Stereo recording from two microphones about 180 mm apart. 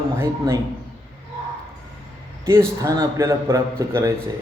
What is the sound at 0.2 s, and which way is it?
Speech, 15° right (ahead or behind).